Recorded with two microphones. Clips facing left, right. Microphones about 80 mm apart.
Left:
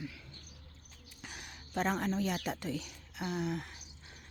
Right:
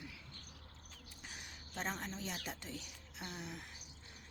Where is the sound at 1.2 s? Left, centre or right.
Left.